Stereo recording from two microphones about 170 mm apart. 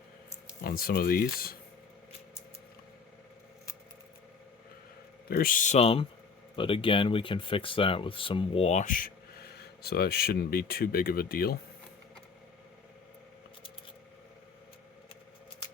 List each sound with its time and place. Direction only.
0.6 s speech: 60° left (ahead or behind)
5.3 s speech: 55° left (ahead or behind)